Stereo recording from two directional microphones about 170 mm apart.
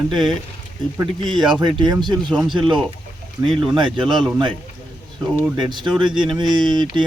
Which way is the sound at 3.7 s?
25° right (ahead or behind).